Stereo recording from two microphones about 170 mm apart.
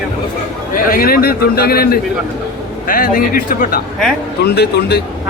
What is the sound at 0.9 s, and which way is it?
A man's voice, 60° left (ahead or behind).